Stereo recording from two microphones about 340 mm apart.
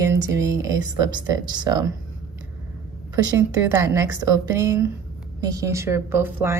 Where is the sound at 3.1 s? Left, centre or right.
Centre.